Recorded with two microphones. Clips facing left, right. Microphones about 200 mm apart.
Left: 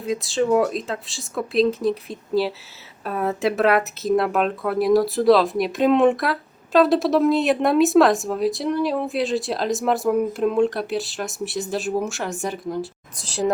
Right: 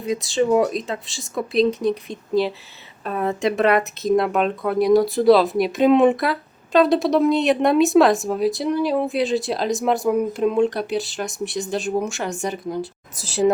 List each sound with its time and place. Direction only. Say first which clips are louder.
0.0 s speech: right 1 dB; centre (ahead or behind)